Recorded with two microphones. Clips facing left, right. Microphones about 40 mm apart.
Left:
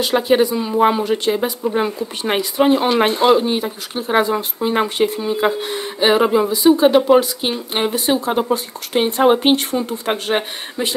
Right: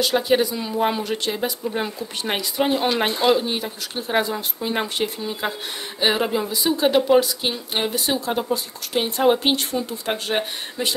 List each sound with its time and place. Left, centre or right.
0.3 s speech: centre
3.1 s speech: left
3.4 s speech: centre
9.6 s speech: left